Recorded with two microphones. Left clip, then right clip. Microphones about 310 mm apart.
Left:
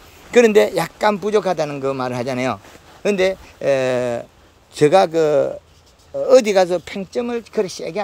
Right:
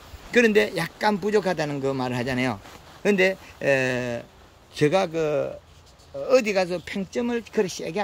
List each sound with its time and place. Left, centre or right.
0.3 s a man's voice: centre